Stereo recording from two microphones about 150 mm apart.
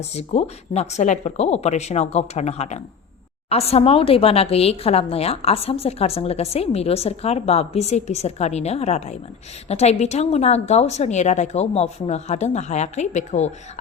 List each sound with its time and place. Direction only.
0.0 s a woman's voice: 45° left (ahead or behind)